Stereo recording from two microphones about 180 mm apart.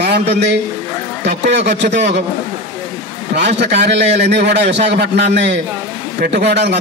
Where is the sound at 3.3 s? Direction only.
70° right (ahead or behind).